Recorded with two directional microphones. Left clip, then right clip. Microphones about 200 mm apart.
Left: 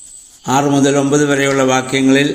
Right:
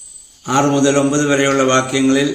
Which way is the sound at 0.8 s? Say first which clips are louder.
Left 2 dB; 20° left (ahead or behind).